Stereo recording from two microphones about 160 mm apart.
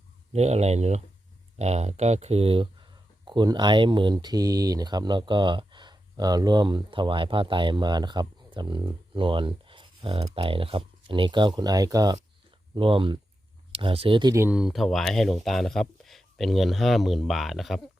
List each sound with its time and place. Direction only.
0.3 s speech: 45° right (ahead or behind); by 12.2 s 25° right (ahead or behind)
12.7 s speech: 35° right (ahead or behind)
14.4 s speech: 5° right (ahead or behind)